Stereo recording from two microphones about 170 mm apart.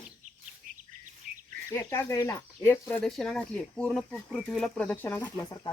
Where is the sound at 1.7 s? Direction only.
15° left (ahead or behind).